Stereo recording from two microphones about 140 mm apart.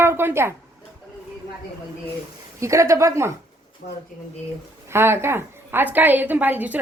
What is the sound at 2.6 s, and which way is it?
Speech, 20° right (ahead or behind).